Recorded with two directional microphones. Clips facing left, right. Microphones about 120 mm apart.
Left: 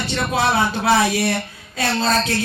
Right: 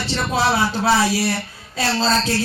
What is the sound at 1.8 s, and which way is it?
Speech, 30° right (ahead or behind).